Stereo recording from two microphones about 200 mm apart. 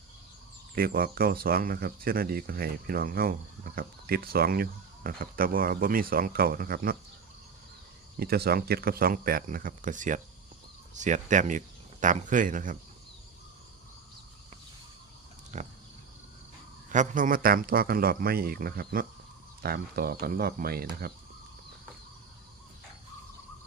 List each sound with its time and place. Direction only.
0.8 s speech: 50° right (ahead or behind)
8.2 s speech: 50° right (ahead or behind)
15.5 s cricket: 35° right (ahead or behind)
16.9 s speech: 40° right (ahead or behind)